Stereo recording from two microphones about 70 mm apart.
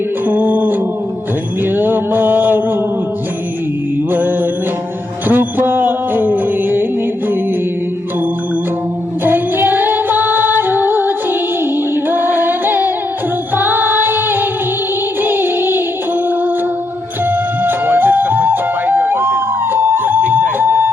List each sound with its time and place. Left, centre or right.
0.3 s music: right
5.3 s music: right
9.2 s music: right
17.2 s music: right